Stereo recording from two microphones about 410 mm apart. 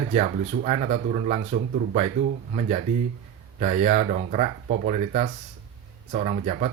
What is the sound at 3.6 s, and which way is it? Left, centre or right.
Speech, centre.